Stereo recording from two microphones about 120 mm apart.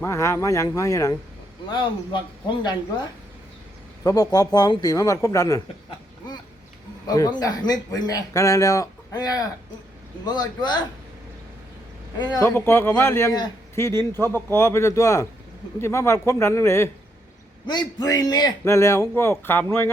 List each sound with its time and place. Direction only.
0.0 s a man's voice: 20° left (ahead or behind)
1.7 s speech: 40° left (ahead or behind)
4.0 s speech: 30° left (ahead or behind)
7.1 s speech: 35° left (ahead or behind)
12.4 s a man's voice: 20° left (ahead or behind)
17.7 s a man's voice: 35° left (ahead or behind); by 19.9 s 20° left (ahead or behind)